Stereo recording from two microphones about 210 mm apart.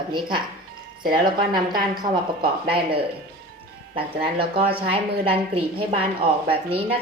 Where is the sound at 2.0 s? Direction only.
20° right (ahead or behind).